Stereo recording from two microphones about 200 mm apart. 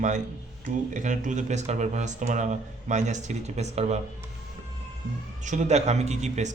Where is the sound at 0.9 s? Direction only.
40° right (ahead or behind).